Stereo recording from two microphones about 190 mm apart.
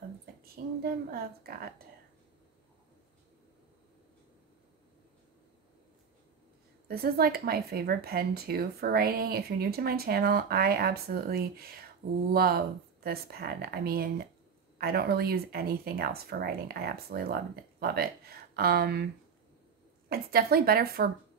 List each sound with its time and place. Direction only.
0.4 s a sound: 50° right (ahead or behind)
6.9 s speech: 55° right (ahead or behind)
20.1 s speech: 50° right (ahead or behind)